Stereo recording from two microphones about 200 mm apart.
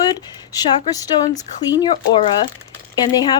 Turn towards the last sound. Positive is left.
turn(degrees=20)  # may be behind; listen again after turning